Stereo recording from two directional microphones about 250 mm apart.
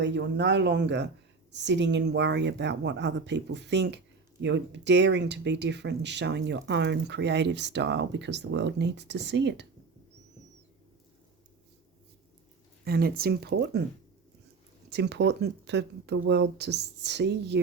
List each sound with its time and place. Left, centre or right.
0.0 s speech: right
12.8 s speech: right
14.8 s speech: right